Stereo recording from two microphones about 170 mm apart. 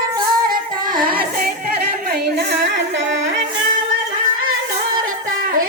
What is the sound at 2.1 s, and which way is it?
Music, 70° right (ahead or behind).